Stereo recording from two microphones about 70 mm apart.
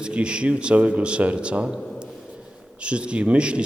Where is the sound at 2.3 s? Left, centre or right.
Centre.